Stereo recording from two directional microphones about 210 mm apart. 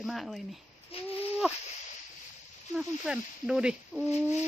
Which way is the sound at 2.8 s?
5° right (ahead or behind).